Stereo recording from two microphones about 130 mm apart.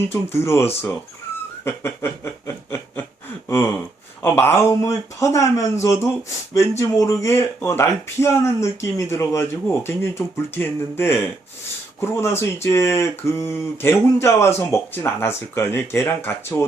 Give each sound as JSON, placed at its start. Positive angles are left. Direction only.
{"t": 0.1, "sound": "speech", "side_deg": 20}